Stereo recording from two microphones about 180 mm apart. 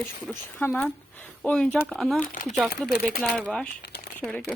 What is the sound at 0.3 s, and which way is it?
Speech, 5° left (ahead or behind).